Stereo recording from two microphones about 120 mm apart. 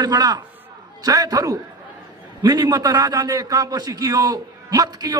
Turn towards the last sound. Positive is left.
turn(degrees=-35)  # may be behind; listen again after turning